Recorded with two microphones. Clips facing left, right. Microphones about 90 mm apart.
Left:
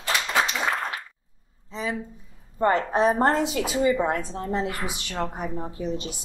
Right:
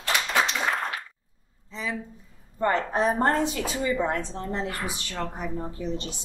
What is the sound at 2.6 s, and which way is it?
Speech, 20° left (ahead or behind).